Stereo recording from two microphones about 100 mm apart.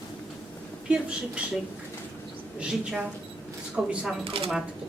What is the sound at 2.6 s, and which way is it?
Speech, 10° right (ahead or behind).